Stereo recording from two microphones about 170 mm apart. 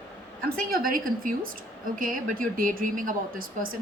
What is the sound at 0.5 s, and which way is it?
Speech, 55° right (ahead or behind).